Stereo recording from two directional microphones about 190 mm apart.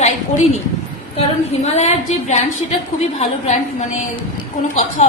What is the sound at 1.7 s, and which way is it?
A woman's voice, 35° left (ahead or behind).